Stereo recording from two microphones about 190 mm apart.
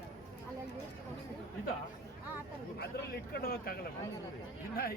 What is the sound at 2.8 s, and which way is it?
Speech, 55° left (ahead or behind).